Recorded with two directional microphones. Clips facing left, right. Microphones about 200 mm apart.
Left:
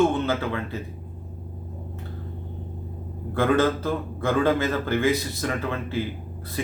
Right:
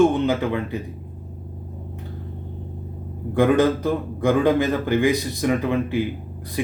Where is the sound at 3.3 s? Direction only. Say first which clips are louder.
Right 4 dB; 15° right (ahead or behind).